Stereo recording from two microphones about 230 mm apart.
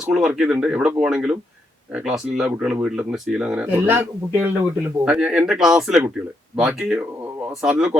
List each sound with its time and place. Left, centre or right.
0.0 s speech: centre